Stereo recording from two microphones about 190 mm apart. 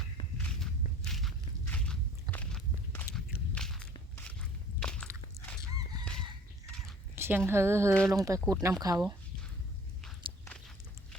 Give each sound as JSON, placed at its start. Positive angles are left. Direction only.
{"t": 0.3, "sound": "walk", "side_deg": 5}
{"t": 4.2, "sound": "biting", "side_deg": 5}
{"t": 7.2, "sound": "speech", "side_deg": -10}